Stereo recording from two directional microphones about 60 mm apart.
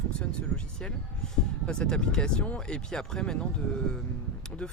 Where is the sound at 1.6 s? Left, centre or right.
Centre.